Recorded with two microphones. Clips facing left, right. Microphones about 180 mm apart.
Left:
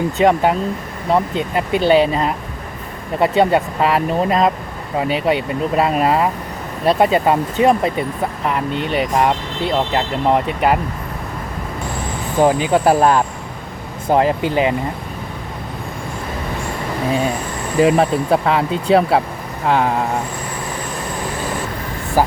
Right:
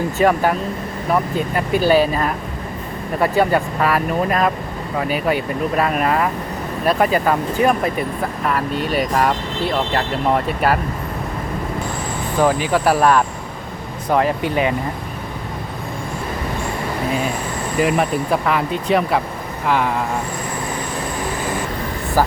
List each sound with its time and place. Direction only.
0.2 s speech: 20° left (ahead or behind)
12.4 s speech: 20° left (ahead or behind)
17.7 s speech: 30° left (ahead or behind)